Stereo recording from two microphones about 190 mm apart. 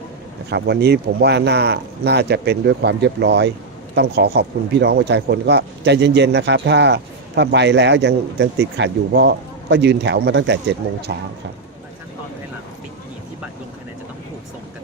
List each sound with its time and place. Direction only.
0.5 s speech: 60° right (ahead or behind)